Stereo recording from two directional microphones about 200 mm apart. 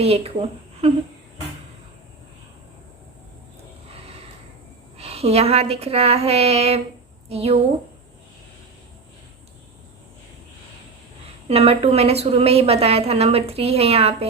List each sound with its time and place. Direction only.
0.0 s a woman's voice: 30° right (ahead or behind)
4.9 s a woman's voice: 30° right (ahead or behind)
11.4 s a woman's voice: 30° right (ahead or behind)